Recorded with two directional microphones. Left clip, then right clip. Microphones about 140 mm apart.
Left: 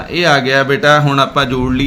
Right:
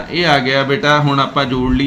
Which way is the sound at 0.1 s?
40° left (ahead or behind).